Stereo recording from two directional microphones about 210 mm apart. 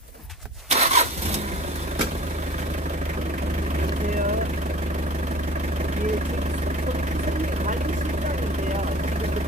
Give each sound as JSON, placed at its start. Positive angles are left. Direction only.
{"t": 0.7, "sound": "vehicle", "side_deg": -30}